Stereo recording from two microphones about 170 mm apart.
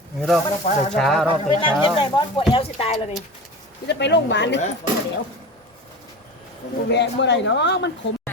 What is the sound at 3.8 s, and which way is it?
Speech, 90° left.